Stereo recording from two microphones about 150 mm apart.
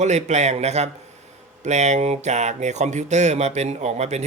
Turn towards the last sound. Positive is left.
turn(degrees=-45)  # may be behind; listen again after turning